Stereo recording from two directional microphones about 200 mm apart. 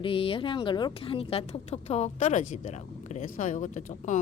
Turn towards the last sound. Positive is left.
turn(degrees=40)  # may be behind; listen again after turning